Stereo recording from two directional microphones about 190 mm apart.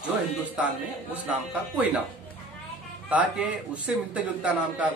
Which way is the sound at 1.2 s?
5° right (ahead or behind).